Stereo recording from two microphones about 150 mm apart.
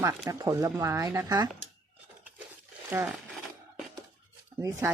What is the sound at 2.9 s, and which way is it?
Speech, 15° right (ahead or behind).